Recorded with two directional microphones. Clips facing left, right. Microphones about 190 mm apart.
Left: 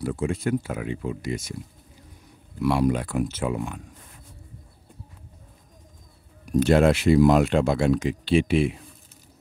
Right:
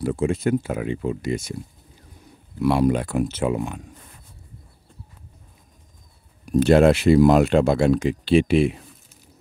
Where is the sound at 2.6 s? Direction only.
25° right (ahead or behind).